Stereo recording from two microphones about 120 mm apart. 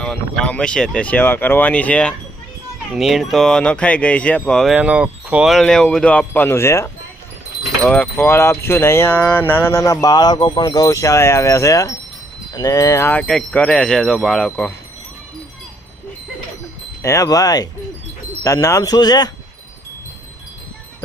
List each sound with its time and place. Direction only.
0.0 s wind chime: 5° left (ahead or behind)
2.9 s wind chime: centre (ahead or behind)
4.7 s speech: 10° right (ahead or behind)
5.5 s wind chime: 5° left (ahead or behind)
17.0 s speech: 25° left (ahead or behind)